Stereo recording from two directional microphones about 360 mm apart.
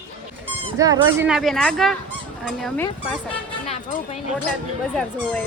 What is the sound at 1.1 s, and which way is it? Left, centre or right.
A woman's voice, centre.